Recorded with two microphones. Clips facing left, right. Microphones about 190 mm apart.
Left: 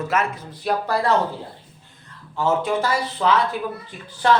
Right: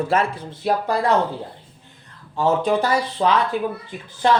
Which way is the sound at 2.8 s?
15° right (ahead or behind).